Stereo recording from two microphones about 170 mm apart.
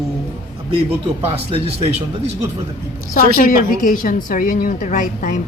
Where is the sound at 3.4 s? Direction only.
55° left (ahead or behind).